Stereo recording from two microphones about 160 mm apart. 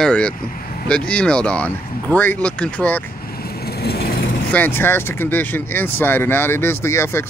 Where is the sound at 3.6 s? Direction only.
85° left.